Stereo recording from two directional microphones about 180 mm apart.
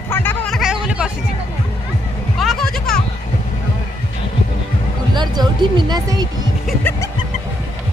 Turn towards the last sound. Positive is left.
turn(degrees=10)  # may be behind; listen again after turning